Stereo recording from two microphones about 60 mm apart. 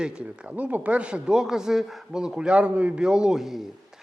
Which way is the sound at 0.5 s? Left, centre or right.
Right.